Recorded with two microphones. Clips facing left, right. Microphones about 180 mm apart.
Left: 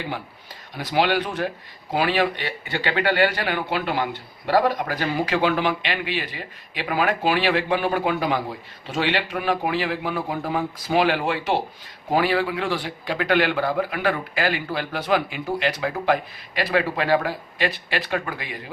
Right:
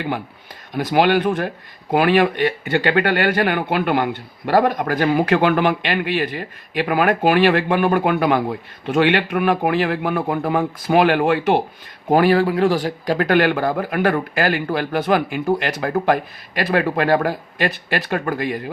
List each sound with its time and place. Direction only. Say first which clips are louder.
0.8 s speech: right 5 dB; 50° right (ahead or behind)